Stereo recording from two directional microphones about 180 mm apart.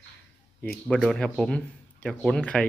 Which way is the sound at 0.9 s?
5° left (ahead or behind).